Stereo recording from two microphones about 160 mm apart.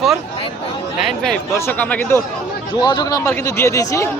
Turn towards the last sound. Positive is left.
turn(degrees=20)  # may be behind; listen again after turning